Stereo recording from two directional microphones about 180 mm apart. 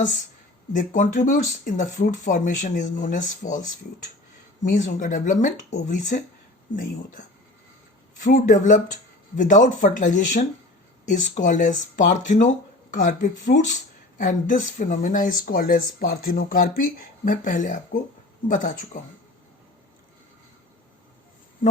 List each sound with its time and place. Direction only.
0.7 s speech: 45° left (ahead or behind)
4.6 s speech: 50° left (ahead or behind)